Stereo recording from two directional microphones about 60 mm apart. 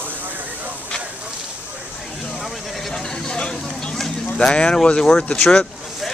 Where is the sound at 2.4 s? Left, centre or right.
Centre.